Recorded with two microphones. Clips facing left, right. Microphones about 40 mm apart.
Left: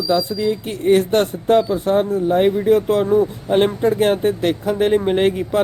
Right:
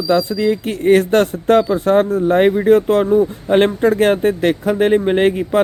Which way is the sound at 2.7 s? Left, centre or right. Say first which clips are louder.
Right 3 dB; right.